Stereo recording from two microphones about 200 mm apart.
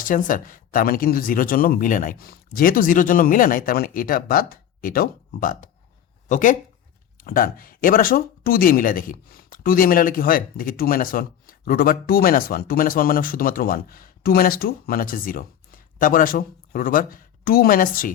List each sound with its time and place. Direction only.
0.0 s speech: 40° left (ahead or behind)